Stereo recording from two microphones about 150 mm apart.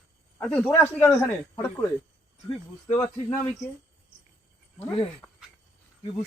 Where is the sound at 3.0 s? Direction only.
35° left (ahead or behind).